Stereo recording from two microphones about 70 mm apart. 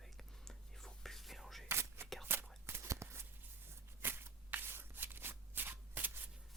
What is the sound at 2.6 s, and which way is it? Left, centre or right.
Walk, right.